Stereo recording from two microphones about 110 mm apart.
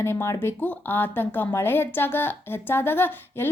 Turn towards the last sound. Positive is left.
turn(degrees=20)  # may be behind; listen again after turning